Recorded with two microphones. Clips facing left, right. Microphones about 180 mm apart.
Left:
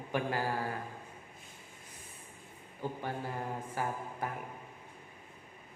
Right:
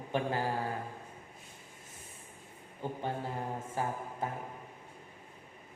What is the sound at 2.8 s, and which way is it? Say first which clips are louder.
A man's voice: right 1 dB; 20° right (ahead or behind).